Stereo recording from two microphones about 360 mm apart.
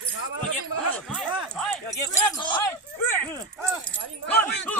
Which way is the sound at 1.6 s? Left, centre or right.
Centre.